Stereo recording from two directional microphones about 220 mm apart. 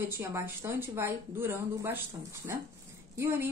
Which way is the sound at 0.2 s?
10° right (ahead or behind).